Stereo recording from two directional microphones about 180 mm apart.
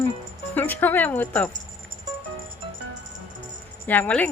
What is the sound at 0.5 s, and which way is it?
Speech, 10° left (ahead or behind).